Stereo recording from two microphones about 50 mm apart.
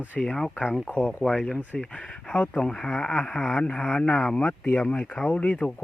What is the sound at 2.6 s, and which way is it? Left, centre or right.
Speech, centre.